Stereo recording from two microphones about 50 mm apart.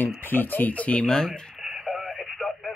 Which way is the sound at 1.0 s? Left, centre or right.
Centre.